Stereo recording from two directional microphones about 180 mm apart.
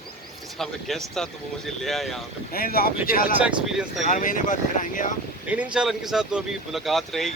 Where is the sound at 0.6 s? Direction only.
Centre (ahead or behind).